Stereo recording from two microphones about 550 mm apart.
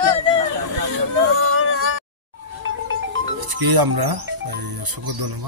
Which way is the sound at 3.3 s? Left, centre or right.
Right.